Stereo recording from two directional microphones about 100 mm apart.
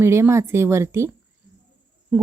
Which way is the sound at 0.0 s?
25° right (ahead or behind).